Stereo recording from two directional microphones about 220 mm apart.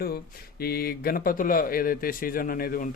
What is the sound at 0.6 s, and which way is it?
Speech, 45° left (ahead or behind).